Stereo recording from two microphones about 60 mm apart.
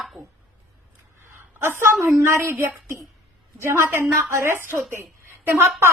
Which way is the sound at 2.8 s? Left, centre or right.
Right.